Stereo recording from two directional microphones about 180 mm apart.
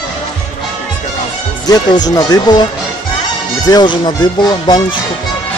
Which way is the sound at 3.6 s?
25° left (ahead or behind).